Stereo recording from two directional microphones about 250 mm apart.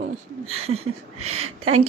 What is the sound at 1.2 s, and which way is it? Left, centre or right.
Speech, right.